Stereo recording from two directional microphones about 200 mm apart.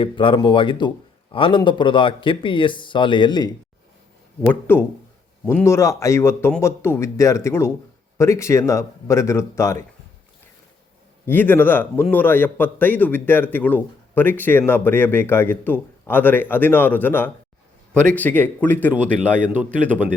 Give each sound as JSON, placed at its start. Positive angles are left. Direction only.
{"t": 0.0, "sound": "a man's voice", "side_deg": 25}
{"t": 4.4, "sound": "a man's voice", "side_deg": 10}
{"t": 11.3, "sound": "a man's voice", "side_deg": 10}